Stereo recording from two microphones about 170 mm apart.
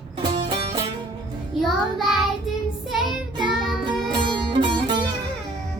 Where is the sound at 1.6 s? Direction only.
Centre (ahead or behind).